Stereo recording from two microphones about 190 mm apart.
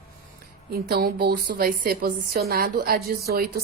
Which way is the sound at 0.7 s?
55° right (ahead or behind).